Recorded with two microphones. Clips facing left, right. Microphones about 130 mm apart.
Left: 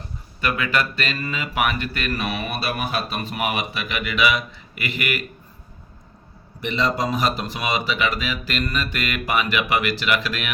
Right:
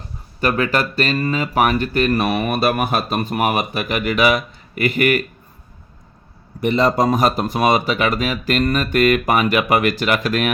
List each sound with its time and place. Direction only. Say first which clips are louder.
0.4 s speech: right 5 dB; 40° right (ahead or behind)
6.6 s speech: right 7 dB; 45° right (ahead or behind)